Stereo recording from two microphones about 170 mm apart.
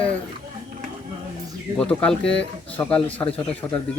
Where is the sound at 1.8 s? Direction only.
5° left (ahead or behind).